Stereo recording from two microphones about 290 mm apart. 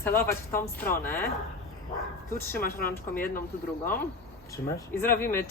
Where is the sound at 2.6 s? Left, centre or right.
Left.